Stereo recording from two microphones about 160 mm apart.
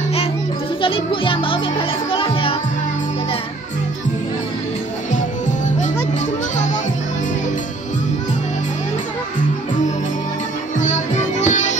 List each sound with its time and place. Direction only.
0.8 s a child's voice: 35° left (ahead or behind)
10.8 s music: 50° left (ahead or behind)